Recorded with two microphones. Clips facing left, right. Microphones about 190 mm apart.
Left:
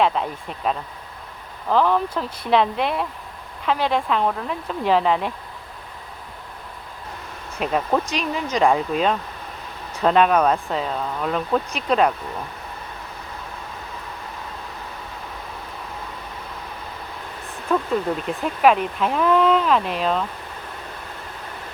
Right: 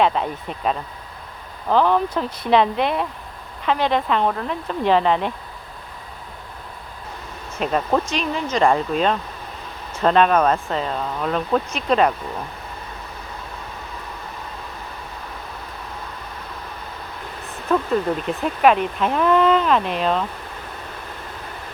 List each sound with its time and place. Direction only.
0.0 s speech: centre (ahead or behind)
7.6 s speech: 5° left (ahead or behind)
17.7 s speech: centre (ahead or behind)